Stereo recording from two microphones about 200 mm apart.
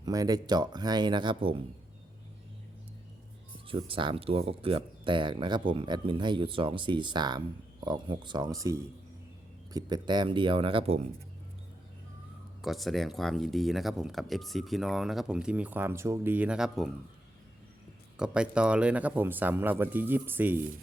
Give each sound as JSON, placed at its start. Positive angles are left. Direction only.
{"t": 0.0, "sound": "speech", "side_deg": -20}
{"t": 3.7, "sound": "speech", "side_deg": -25}
{"t": 12.6, "sound": "speech", "side_deg": 0}
{"t": 18.2, "sound": "speech", "side_deg": -5}